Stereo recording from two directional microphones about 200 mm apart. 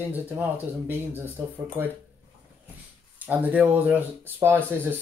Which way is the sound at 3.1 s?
10° right (ahead or behind).